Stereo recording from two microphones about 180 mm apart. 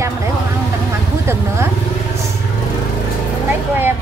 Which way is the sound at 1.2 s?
15° right (ahead or behind).